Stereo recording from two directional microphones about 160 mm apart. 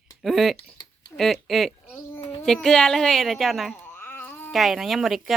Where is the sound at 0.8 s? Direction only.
25° left (ahead or behind).